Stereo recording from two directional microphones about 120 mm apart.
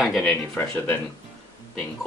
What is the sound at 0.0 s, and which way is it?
Speech, centre (ahead or behind).